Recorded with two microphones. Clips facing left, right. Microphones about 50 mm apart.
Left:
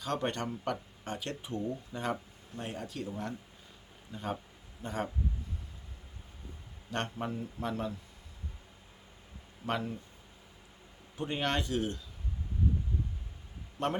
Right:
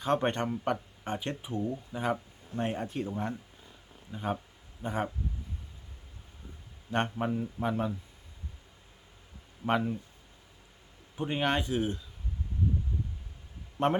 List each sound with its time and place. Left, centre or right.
0.0 s speech: right
1.5 s speech: centre
2.6 s speech: right
6.9 s speech: centre
9.6 s speech: centre
11.2 s speech: centre
13.7 s a man's voice: right